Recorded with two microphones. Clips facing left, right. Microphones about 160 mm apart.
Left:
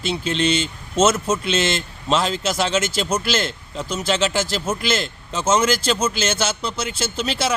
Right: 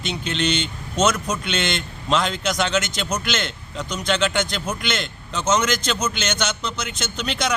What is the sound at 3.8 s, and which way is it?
Speech, 5° left (ahead or behind).